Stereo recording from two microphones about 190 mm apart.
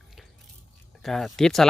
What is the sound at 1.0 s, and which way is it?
Speech, centre (ahead or behind).